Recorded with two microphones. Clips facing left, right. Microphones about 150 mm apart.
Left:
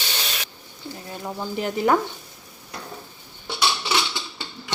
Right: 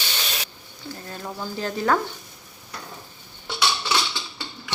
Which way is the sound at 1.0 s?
15° left (ahead or behind).